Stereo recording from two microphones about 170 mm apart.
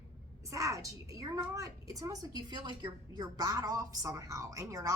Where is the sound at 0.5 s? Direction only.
20° right (ahead or behind).